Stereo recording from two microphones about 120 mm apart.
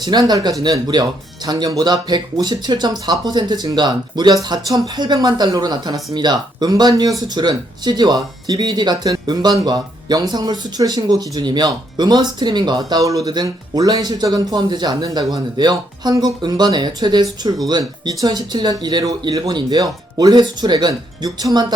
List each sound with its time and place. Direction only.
0.0 s speech: 35° right (ahead or behind)